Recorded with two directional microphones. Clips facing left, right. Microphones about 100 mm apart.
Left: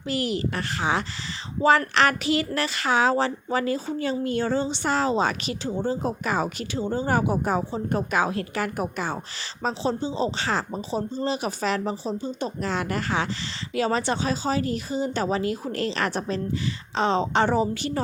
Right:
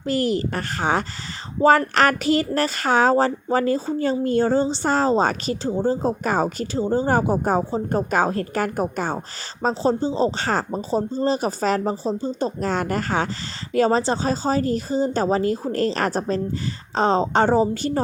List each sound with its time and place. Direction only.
0.0 s speech: 40° right (ahead or behind)